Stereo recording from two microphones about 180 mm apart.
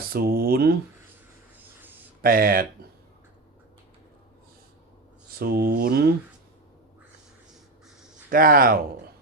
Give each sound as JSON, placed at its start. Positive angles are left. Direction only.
{"t": 0.1, "sound": "speech", "side_deg": -55}
{"t": 2.2, "sound": "speech", "side_deg": -55}
{"t": 5.4, "sound": "speech", "side_deg": -55}
{"t": 8.3, "sound": "speech", "side_deg": -55}